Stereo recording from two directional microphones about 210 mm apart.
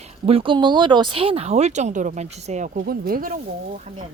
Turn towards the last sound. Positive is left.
turn(degrees=-40)  # may be behind; listen again after turning